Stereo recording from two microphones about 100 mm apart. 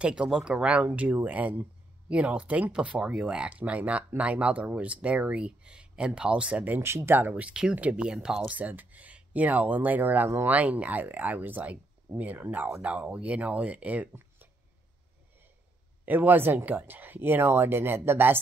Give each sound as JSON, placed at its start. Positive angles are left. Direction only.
{"t": 0.0, "sound": "speech", "side_deg": -10}
{"t": 16.1, "sound": "speech", "side_deg": -20}